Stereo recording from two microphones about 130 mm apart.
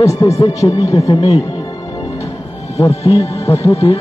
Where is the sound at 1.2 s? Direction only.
25° left (ahead or behind).